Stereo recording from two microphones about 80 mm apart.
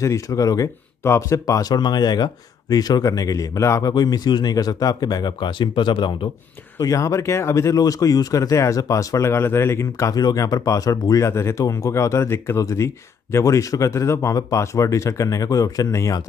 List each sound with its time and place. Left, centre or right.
0.0 s speech: left
1.0 s speech: left
3.9 s speech: left
6.8 s speech: left
10.1 s speech: left